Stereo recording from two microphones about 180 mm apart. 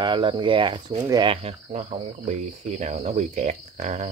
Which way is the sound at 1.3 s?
35° right (ahead or behind).